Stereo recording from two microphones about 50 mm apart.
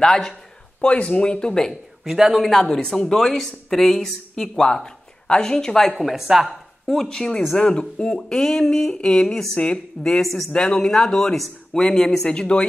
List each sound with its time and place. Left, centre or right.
0.0 s speech: centre
1.7 s speech: centre
5.9 s a woman's voice: centre
6.9 s speech: centre
10.5 s speech: centre
12.3 s speech: left